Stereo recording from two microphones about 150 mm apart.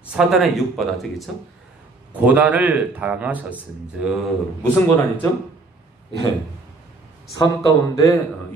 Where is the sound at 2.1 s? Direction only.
10° right (ahead or behind).